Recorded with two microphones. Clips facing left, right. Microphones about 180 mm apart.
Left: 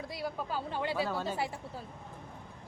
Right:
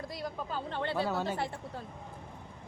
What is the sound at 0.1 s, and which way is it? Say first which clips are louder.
Speech: left 4 dB; 5° left (ahead or behind).